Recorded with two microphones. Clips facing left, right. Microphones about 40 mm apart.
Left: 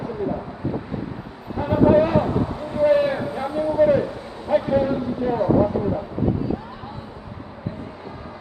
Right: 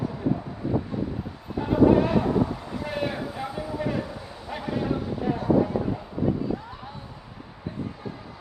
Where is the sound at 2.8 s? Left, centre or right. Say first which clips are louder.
Left 12 dB; centre.